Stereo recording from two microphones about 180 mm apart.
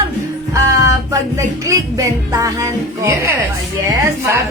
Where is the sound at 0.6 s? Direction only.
15° right (ahead or behind).